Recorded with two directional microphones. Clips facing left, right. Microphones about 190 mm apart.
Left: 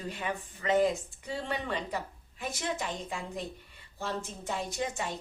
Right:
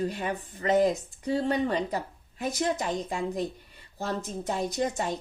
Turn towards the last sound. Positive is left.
turn(degrees=-40)  # may be behind; listen again after turning